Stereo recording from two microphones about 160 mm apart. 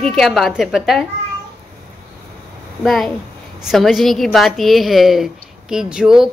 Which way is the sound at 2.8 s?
Centre (ahead or behind).